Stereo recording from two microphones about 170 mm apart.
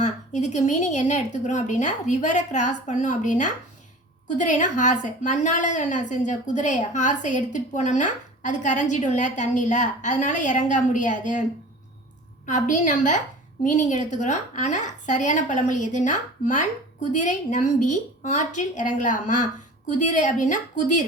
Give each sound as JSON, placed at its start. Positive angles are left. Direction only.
{"t": 0.0, "sound": "a woman's voice", "side_deg": 45}
{"t": 12.5, "sound": "a woman's voice", "side_deg": 50}